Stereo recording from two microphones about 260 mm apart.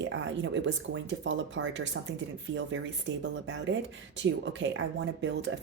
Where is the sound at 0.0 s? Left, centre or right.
Right.